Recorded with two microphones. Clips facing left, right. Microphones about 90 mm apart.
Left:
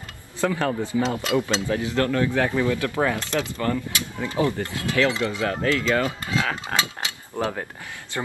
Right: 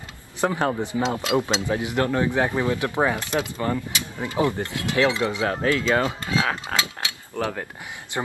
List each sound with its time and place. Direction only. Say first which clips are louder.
0.5 s speech: even; 25° right (ahead or behind)
6.7 s cutlery: left 1 dB; 20° left (ahead or behind)